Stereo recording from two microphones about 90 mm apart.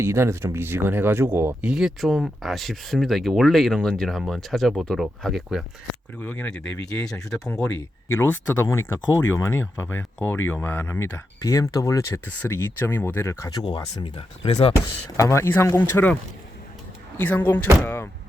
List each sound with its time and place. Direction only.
0.0 s speech: 30° right (ahead or behind)
1.6 s speech: 5° right (ahead or behind)
6.2 s speech: 15° left (ahead or behind)
8.0 s speech: 25° left (ahead or behind)
12.2 s speech: 25° left (ahead or behind)
13.6 s speech: 55° left (ahead or behind)
14.2 s speech: 90° left
15.2 s speech: 30° left (ahead or behind)
17.2 s speech: 20° left (ahead or behind)